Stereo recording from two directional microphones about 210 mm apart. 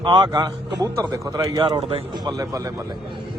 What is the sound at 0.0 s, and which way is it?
Speech, 20° right (ahead or behind).